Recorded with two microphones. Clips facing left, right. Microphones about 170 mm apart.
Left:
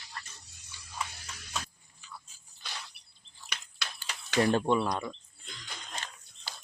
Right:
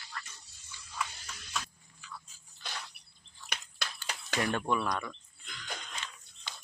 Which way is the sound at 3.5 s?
50° right (ahead or behind).